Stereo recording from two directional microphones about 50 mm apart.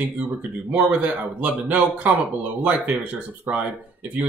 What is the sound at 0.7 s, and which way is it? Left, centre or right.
Speech, right.